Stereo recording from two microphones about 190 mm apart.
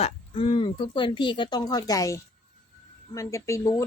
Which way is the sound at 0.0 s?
30° left (ahead or behind).